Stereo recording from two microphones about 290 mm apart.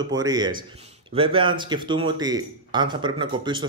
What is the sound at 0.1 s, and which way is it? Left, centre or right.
Speech, centre.